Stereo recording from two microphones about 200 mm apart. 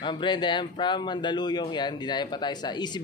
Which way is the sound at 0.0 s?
25° left (ahead or behind).